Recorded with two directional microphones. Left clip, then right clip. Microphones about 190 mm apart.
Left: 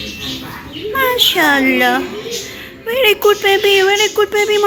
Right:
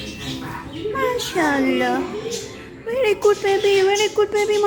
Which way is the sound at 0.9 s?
5° left (ahead or behind).